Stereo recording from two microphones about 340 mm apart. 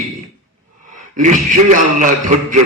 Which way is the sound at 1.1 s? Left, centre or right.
Right.